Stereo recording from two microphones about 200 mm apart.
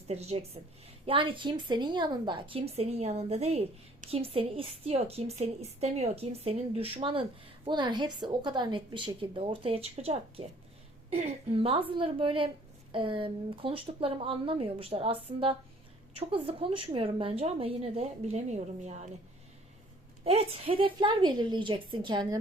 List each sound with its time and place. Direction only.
0.1 s a woman's voice: 30° right (ahead or behind)
20.2 s a woman's voice: 30° right (ahead or behind)